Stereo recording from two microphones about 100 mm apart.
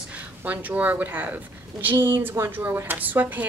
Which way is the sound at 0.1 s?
15° right (ahead or behind).